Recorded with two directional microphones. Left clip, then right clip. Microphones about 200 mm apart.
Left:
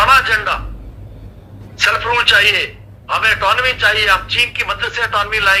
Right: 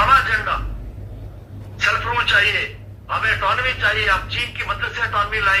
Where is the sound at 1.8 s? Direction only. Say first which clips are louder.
Left 5 dB; 40° left (ahead or behind).